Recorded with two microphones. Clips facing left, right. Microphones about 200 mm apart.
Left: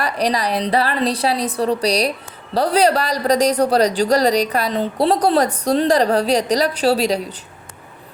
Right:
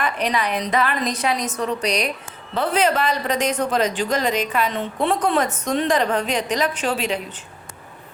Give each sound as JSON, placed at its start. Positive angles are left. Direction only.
{"t": 0.0, "sound": "a woman's voice", "side_deg": 35}